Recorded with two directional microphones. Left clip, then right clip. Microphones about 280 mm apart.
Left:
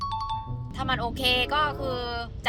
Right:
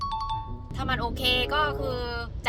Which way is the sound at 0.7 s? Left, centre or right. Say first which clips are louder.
Left 1 dB; centre.